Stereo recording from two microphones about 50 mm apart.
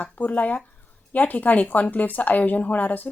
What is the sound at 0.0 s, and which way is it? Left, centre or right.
Speech, left.